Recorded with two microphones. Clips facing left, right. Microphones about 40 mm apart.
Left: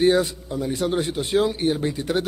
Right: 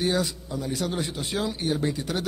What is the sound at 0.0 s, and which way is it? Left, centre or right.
A man's voice, left.